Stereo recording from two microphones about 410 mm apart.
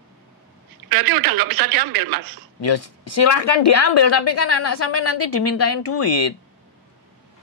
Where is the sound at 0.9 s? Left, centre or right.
Right.